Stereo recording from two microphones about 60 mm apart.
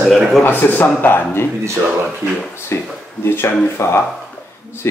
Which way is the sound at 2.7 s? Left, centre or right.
Left.